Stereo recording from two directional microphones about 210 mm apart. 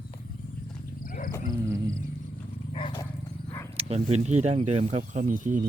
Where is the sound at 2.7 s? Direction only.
20° left (ahead or behind).